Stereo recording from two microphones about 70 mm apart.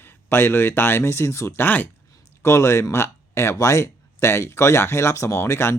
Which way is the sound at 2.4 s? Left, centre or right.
Left.